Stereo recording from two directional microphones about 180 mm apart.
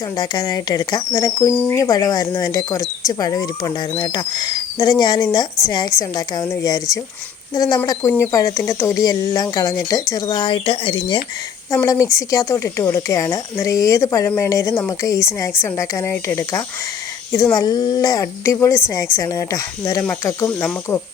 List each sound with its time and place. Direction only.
0.2 s speech: 20° left (ahead or behind)
11.7 s a woman's voice: 15° left (ahead or behind)